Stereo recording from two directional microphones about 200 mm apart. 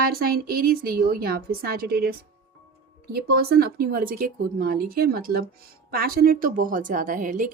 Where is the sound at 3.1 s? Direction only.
50° right (ahead or behind).